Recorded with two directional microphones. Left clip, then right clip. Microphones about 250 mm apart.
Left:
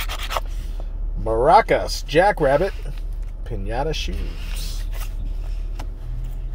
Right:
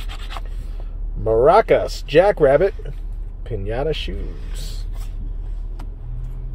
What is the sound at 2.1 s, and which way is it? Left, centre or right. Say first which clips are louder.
Speech: right 3 dB; right.